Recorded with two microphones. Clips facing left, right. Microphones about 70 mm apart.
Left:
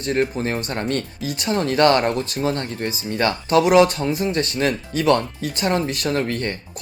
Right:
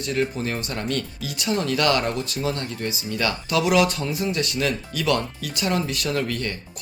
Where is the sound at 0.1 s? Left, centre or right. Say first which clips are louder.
Left 4 dB; left.